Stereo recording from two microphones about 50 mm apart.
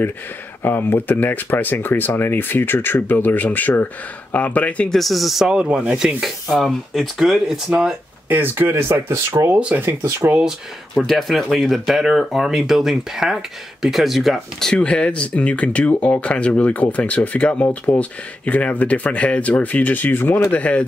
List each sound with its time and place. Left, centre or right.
0.7 s speech: left
4.9 s speech: centre
5.5 s speech: centre
6.2 s speech: centre
8.3 s speech: right
8.8 s speech: right
11.1 s speech: centre
14.7 s speech: centre
15.9 s speech: left
16.2 s speech: left
20.3 s speech: left